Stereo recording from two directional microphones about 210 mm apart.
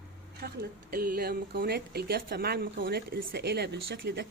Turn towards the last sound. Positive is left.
turn(degrees=-55)  # may be behind; listen again after turning